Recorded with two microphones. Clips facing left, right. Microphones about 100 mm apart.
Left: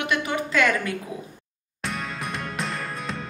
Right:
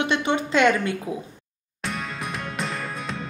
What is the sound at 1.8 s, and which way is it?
Music, centre (ahead or behind).